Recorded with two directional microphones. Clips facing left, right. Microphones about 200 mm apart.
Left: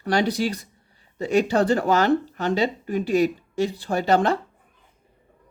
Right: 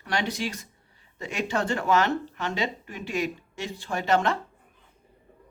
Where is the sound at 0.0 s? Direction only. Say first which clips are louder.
Left 7 dB; 35° left (ahead or behind).